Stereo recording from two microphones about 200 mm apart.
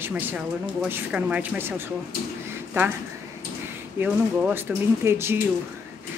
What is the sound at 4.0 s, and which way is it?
Speech, 10° right (ahead or behind).